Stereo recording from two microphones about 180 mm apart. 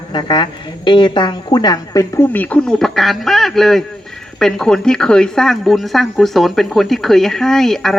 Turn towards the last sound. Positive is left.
turn(degrees=0)  # may be behind; listen again after turning